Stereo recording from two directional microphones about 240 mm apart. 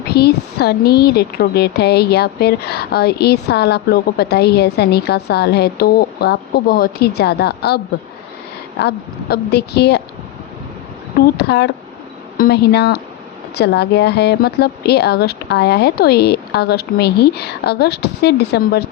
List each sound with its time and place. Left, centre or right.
0.1 s speech: left
8.8 s speech: left
11.3 s speech: left